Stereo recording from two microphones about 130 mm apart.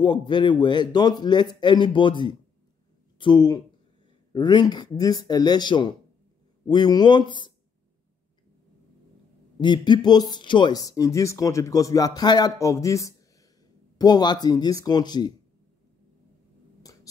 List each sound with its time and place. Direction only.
0.0 s a man's voice: 40° left (ahead or behind)
9.6 s a man's voice: 35° left (ahead or behind)
16.8 s a sound: 30° left (ahead or behind)